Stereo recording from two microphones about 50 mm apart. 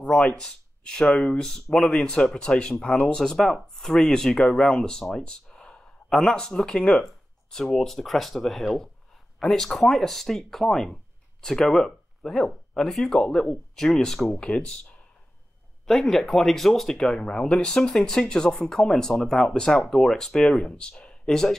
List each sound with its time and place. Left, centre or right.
0.1 s speech: centre
1.4 s speech: centre
5.2 s a sound: centre
6.1 s speech: centre
7.7 s speech: centre
15.9 s speech: centre